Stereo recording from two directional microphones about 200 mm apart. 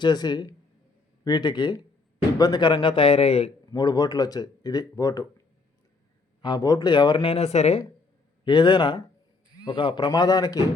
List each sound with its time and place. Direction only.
0.0 s speech: 20° left (ahead or behind)
6.4 s speech: 20° left (ahead or behind)